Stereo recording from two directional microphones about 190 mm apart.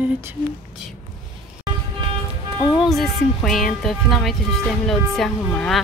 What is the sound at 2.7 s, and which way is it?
Speech, centre (ahead or behind).